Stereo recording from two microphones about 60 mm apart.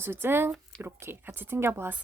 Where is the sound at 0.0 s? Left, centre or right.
Right.